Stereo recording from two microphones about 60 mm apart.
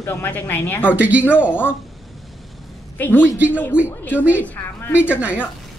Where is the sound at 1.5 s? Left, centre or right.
Left.